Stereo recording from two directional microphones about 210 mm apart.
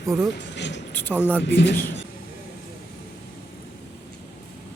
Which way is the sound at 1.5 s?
55° left (ahead or behind).